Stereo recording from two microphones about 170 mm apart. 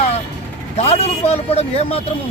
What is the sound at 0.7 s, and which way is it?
Speech, 35° left (ahead or behind).